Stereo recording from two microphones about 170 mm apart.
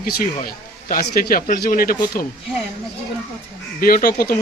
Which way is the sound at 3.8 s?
60° left (ahead or behind).